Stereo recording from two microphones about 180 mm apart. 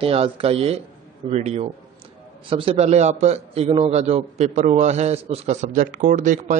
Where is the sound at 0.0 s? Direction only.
30° right (ahead or behind).